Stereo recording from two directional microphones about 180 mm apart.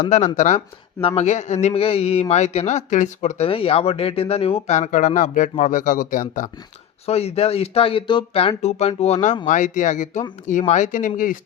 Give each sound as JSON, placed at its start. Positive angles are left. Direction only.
{"t": 0.3, "sound": "speech", "side_deg": 45}
{"t": 7.0, "sound": "speech", "side_deg": 35}